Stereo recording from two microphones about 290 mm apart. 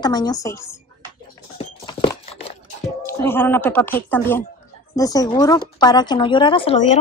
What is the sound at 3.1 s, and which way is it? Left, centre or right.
A woman's voice, centre.